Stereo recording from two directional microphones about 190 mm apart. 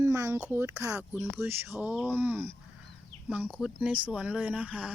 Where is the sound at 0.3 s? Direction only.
10° right (ahead or behind).